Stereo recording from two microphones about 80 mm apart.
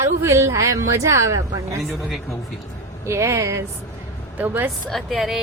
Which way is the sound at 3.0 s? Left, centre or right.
Right.